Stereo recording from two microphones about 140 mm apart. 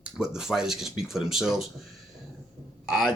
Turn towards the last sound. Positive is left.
turn(degrees=-5)  # may be behind; listen again after turning